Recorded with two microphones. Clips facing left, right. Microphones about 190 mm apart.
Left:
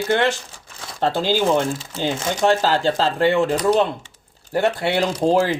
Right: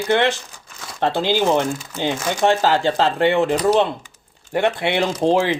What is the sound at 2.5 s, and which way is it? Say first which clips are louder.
Speech: even; 40° left (ahead or behind).